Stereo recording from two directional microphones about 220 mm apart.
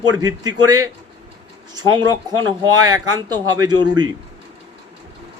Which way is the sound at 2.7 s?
15° right (ahead or behind).